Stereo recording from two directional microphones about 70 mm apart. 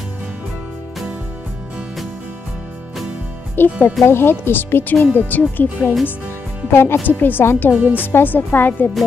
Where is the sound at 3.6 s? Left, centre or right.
Left.